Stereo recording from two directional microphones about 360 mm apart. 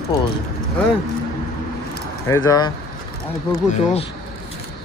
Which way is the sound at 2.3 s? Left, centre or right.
Centre.